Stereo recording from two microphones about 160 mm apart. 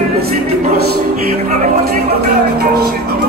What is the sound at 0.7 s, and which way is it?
Music, 70° right (ahead or behind).